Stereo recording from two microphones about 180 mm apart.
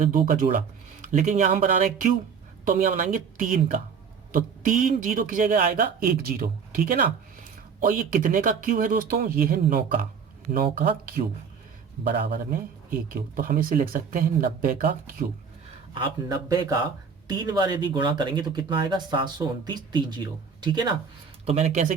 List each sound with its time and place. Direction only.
0.0 s speech: 50° right (ahead or behind)
1.0 s speech: 40° right (ahead or behind)
13.1 s speech: 50° right (ahead or behind)
16.0 s speech: 20° right (ahead or behind)
21.4 s speech: 35° right (ahead or behind)